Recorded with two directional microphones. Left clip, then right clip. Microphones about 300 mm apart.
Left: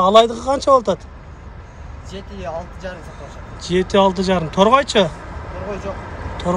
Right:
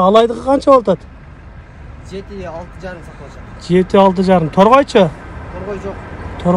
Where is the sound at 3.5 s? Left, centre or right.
Centre.